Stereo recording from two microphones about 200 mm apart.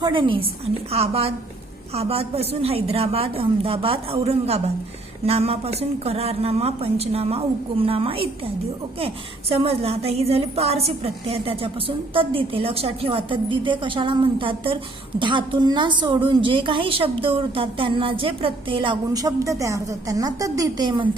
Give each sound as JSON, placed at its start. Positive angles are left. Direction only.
{"t": 0.0, "sound": "a woman's voice", "side_deg": -25}